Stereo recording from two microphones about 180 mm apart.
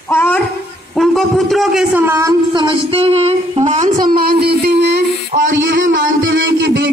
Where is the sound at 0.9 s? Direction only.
Centre (ahead or behind).